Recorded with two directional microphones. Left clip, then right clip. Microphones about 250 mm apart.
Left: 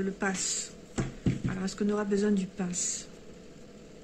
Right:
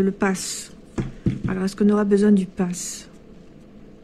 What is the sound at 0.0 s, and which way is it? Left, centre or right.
Speech, right.